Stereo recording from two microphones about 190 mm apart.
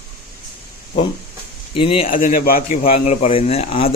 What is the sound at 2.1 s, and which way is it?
Speech, 45° left (ahead or behind).